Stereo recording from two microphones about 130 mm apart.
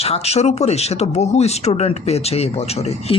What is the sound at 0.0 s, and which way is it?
Speech, 55° left (ahead or behind).